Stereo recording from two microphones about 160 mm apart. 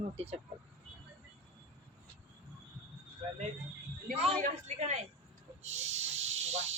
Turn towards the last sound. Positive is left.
turn(degrees=-45)  # may be behind; listen again after turning